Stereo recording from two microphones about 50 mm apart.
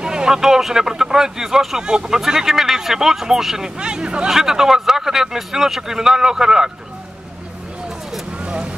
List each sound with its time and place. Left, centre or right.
0.0 s speech: centre
8.4 s vehicle: right